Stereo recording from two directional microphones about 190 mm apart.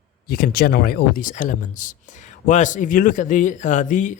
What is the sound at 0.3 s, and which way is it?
A man's voice, 50° left (ahead or behind).